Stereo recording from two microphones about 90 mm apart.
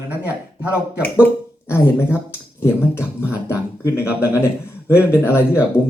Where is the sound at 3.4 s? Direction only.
25° left (ahead or behind).